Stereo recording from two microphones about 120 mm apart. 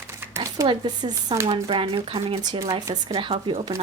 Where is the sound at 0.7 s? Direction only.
35° right (ahead or behind).